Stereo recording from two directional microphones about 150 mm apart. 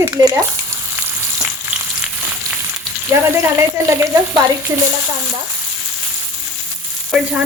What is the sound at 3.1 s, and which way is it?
Speech, 15° right (ahead or behind).